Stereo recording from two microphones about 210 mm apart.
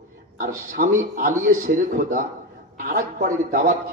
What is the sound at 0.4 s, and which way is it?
A man's voice, 40° right (ahead or behind).